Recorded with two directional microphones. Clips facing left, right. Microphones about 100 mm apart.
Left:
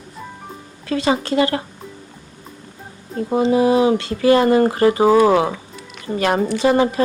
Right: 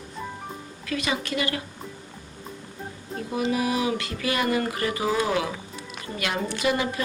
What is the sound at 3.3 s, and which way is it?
A woman's voice, 30° left (ahead or behind).